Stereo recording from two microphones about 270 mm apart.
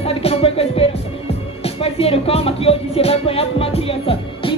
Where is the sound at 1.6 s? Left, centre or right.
Left.